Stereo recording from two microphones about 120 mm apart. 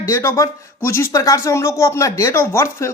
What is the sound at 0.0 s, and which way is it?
Speech, 25° left (ahead or behind).